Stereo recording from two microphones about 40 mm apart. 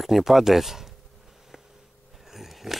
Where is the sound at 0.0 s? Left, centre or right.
Centre.